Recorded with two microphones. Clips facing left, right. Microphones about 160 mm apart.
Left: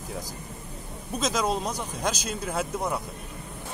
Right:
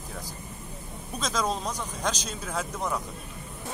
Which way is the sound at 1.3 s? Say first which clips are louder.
Even; 10° left (ahead or behind).